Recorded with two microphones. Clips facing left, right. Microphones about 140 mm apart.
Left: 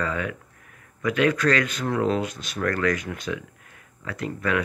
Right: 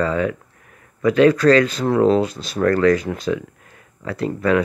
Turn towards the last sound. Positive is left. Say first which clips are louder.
# right 7 dB
turn(degrees=-30)  # may be behind; listen again after turning